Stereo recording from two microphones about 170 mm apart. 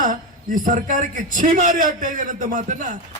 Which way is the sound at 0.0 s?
50° right (ahead or behind).